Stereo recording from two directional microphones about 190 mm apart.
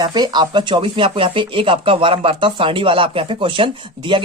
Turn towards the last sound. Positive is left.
turn(degrees=-25)  # may be behind; listen again after turning